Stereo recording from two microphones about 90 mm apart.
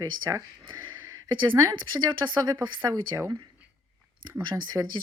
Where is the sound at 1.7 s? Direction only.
60° right (ahead or behind).